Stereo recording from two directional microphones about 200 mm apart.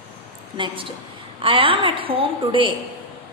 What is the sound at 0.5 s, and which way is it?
A woman's voice, 25° right (ahead or behind).